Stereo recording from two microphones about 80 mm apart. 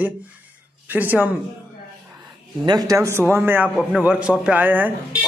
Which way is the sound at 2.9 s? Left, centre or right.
Right.